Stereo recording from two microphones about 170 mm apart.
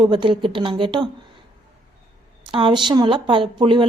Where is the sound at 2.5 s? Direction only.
30° right (ahead or behind).